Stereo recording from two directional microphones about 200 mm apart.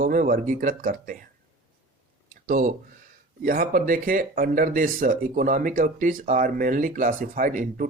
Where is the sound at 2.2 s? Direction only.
45° right (ahead or behind).